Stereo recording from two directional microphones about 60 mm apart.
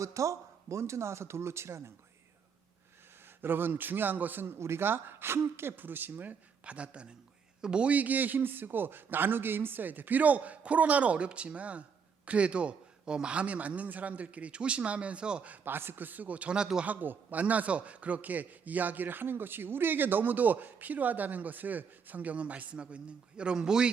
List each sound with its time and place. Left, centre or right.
0.0 s speech: right
3.4 s a man's voice: right
6.7 s a man's voice: centre
15.6 s a man's voice: right; by 16.8 s centre
16.8 s a man's voice: right; by 23.9 s centre